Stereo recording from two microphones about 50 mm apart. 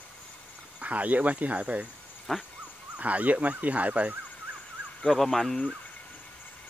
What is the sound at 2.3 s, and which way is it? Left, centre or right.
Dog, centre.